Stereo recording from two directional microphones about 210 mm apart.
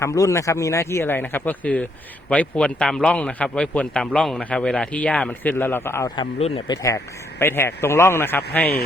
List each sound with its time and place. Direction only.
0.0 s a man's voice: 15° left (ahead or behind)
6.4 s speech: 25° left (ahead or behind)
6.8 s speech: 15° left (ahead or behind)